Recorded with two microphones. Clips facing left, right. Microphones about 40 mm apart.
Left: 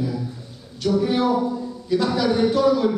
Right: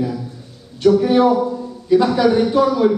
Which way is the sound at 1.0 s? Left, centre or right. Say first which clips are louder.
Right 6 dB; right.